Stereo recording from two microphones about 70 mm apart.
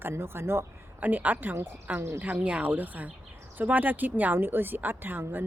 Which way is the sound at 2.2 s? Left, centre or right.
Right.